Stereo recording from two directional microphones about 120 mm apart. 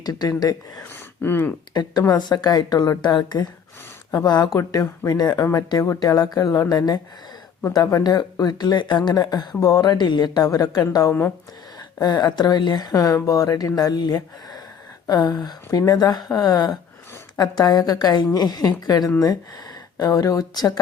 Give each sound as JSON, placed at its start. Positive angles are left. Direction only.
{"t": 0.0, "sound": "speech", "side_deg": 35}
{"t": 1.2, "sound": "speech", "side_deg": 15}
{"t": 1.7, "sound": "speech", "side_deg": 30}